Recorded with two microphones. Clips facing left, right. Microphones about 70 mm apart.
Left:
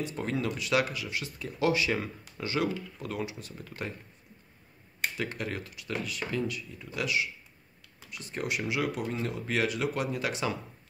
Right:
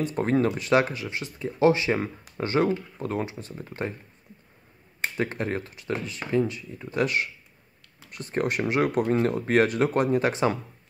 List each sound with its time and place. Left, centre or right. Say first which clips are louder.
0.0 s speech: right 8 dB; right
5.0 s speech: right 5 dB; right